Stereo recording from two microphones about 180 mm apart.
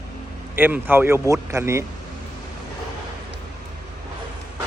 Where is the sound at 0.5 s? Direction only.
10° right (ahead or behind).